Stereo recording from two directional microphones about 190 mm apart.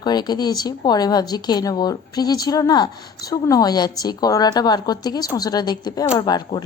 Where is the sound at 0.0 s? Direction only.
20° left (ahead or behind).